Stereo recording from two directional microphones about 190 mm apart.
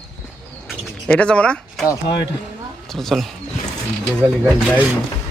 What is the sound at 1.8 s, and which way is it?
Speech, 25° left (ahead or behind).